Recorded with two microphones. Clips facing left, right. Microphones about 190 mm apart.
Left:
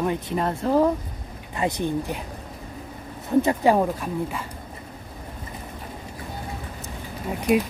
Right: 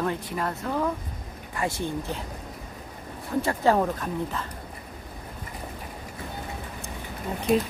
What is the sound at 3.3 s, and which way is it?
A woman's voice, 20° left (ahead or behind).